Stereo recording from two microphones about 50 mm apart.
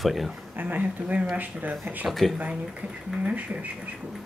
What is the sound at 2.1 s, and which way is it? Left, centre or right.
Speech, centre.